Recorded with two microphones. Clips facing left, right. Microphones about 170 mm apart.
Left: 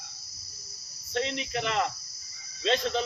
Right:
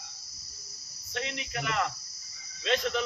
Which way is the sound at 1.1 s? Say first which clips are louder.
Left 6 dB; 30° left (ahead or behind).